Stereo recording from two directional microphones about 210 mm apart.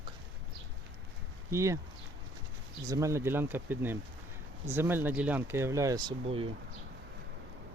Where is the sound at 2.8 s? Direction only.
15° right (ahead or behind).